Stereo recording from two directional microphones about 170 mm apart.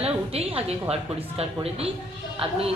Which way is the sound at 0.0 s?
35° right (ahead or behind).